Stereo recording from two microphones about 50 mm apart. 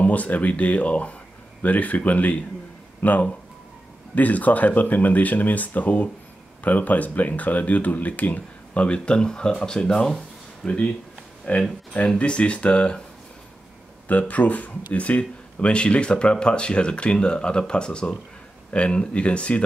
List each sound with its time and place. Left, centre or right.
0.0 s speech: left
11.5 s speech: left
12.2 s speech: left
14.0 s speech: left